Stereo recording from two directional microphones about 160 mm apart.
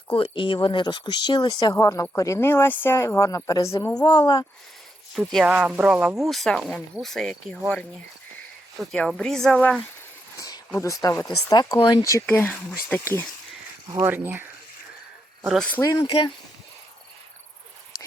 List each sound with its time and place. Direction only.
0.2 s speech: 30° left (ahead or behind)
5.3 s speech: 5° right (ahead or behind)
10.8 s speech: 20° left (ahead or behind)
12.2 s speech: 10° left (ahead or behind)
14.0 s speech: 10° right (ahead or behind)
15.8 s speech: 20° left (ahead or behind)